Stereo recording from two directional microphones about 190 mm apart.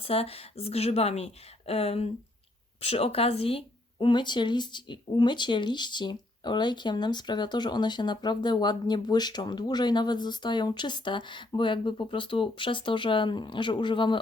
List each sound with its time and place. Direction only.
0.0 s speech: 30° left (ahead or behind)